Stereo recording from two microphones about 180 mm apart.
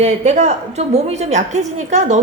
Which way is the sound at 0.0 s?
40° right (ahead or behind).